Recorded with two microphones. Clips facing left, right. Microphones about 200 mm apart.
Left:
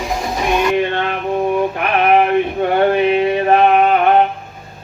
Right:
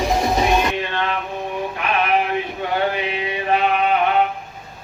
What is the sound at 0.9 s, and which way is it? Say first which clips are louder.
Music: left 3 dB; 55° left (ahead or behind).